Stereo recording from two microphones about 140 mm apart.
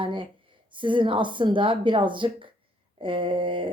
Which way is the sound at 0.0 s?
35° right (ahead or behind).